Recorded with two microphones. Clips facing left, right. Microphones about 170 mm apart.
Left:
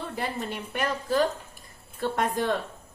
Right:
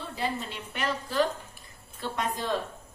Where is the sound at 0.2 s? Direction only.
50° left (ahead or behind).